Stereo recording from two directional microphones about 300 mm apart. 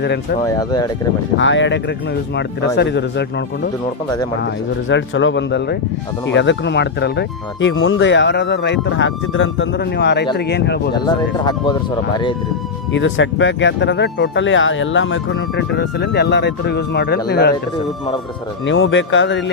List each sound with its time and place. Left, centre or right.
0.0 s speech: left
0.4 s speech: centre
1.4 s speech: left
10.9 s speech: centre
12.9 s speech: left
18.6 s speech: left